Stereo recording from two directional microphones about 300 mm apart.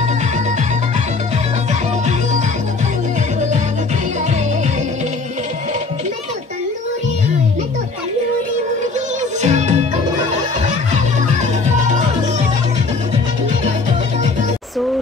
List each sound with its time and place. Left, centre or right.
1.7 s music: right
9.4 s music: right